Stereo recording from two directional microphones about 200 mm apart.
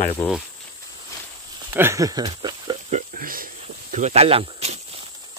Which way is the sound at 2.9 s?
40° right (ahead or behind).